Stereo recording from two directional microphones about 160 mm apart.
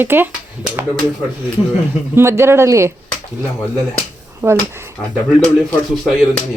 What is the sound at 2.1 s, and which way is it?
Speech, 15° right (ahead or behind).